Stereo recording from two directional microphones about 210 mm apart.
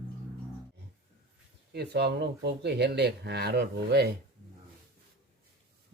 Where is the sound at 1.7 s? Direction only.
50° right (ahead or behind).